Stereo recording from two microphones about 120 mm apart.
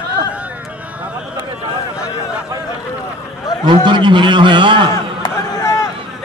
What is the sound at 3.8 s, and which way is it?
A man's voice, 40° right (ahead or behind).